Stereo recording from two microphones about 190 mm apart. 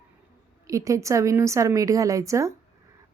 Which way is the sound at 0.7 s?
15° right (ahead or behind).